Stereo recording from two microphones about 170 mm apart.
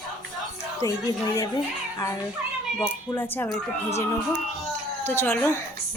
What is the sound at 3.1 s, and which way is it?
Speech, 15° left (ahead or behind).